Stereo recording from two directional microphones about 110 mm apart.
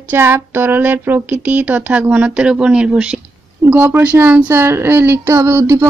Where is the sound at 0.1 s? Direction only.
20° right (ahead or behind).